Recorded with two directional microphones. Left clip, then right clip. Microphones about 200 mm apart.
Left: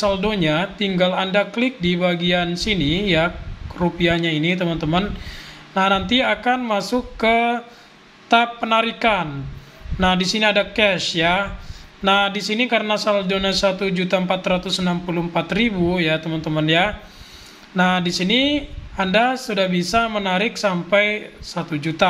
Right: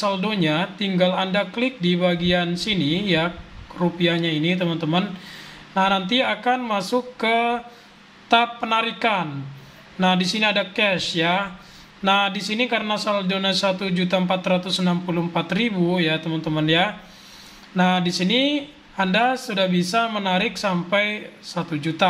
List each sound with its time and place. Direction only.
0.0 s speech: 10° left (ahead or behind)